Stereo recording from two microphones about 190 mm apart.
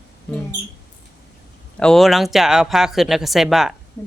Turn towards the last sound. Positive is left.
turn(degrees=0)  # may be behind; listen again after turning